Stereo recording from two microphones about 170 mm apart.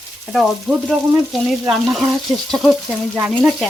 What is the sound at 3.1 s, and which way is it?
Speech, 10° right (ahead or behind).